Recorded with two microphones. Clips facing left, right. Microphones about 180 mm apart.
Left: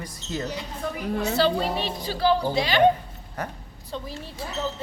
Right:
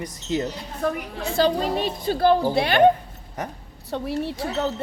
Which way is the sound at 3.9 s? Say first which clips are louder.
Right 9 dB; 70° right (ahead or behind).